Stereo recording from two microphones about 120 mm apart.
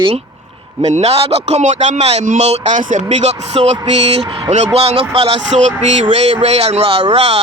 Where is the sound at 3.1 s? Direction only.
70° right (ahead or behind).